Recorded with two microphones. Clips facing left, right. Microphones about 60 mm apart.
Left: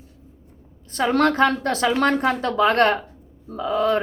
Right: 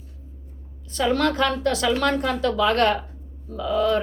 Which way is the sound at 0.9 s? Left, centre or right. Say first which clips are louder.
Left 3 dB; left.